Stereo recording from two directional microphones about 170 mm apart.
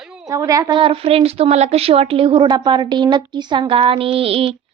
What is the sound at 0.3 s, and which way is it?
A woman's voice, 20° right (ahead or behind).